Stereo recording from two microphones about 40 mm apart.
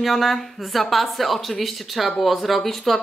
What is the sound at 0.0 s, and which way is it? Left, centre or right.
Speech, centre.